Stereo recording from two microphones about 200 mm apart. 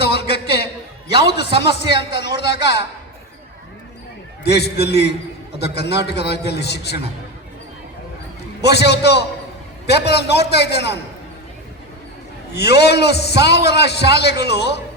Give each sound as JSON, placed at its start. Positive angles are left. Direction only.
{"t": 0.0, "sound": "a sound", "side_deg": 55}
{"t": 2.0, "sound": "a man's voice", "side_deg": 55}
{"t": 4.4, "sound": "a man's voice", "side_deg": 55}
{"t": 8.6, "sound": "a man's voice", "side_deg": 55}
{"t": 12.5, "sound": "a man's voice", "side_deg": 55}